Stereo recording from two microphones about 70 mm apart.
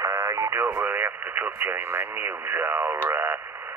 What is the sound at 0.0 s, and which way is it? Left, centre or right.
Radio, right.